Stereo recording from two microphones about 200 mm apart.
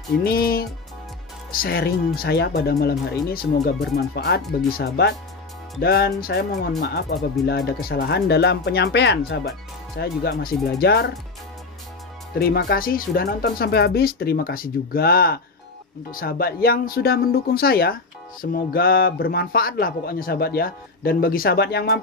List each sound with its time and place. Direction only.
0.2 s speech: 50° left (ahead or behind)
12.4 s speech: 50° left (ahead or behind)